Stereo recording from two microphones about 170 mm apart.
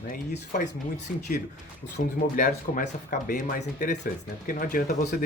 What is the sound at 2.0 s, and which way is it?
Speech, 55° left (ahead or behind).